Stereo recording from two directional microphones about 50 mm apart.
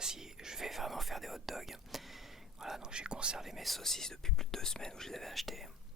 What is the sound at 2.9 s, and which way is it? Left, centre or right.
Speech, centre.